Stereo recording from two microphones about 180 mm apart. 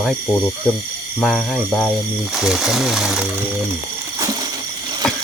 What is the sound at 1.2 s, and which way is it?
Speech, centre (ahead or behind).